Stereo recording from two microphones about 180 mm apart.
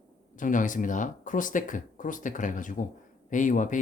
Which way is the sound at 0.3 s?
45° left (ahead or behind).